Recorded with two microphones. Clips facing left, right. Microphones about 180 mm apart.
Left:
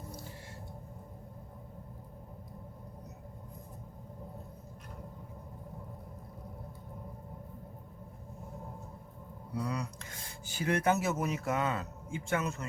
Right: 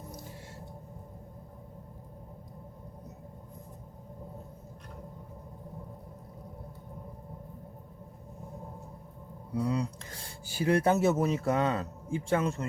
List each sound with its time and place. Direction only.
9.6 s cutlery: 25° right (ahead or behind)
10.5 s a man's voice: 30° right (ahead or behind)